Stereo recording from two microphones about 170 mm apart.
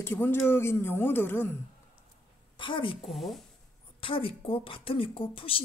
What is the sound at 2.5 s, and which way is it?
Speech, 30° left (ahead or behind).